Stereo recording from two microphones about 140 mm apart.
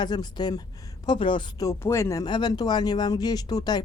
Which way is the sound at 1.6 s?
20° left (ahead or behind).